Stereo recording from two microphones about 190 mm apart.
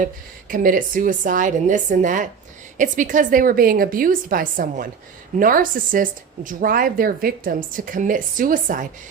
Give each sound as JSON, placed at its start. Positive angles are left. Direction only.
{"t": 0.0, "sound": "speech", "side_deg": -45}